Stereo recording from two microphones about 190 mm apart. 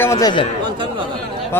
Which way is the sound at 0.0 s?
15° left (ahead or behind).